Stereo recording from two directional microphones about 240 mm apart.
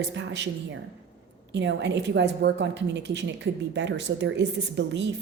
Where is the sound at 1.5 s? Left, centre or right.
Right.